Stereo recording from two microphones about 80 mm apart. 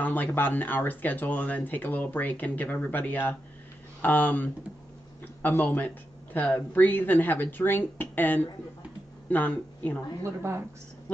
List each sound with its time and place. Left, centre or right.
0.0 s speech: left
10.2 s speech: right